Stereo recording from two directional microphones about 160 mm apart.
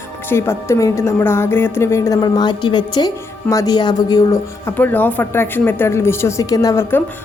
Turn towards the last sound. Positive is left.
turn(degrees=20)  # may be behind; listen again after turning